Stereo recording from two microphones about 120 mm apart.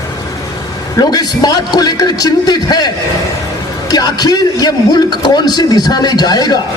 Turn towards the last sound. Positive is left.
turn(degrees=35)  # may be behind; listen again after turning